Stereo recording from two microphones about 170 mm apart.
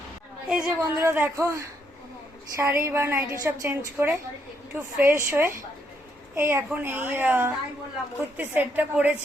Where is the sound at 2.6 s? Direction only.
15° right (ahead or behind).